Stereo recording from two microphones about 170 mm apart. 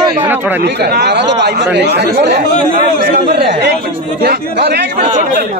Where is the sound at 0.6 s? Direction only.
75° right (ahead or behind).